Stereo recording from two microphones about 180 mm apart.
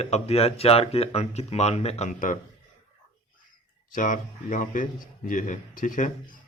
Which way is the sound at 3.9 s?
45° left (ahead or behind).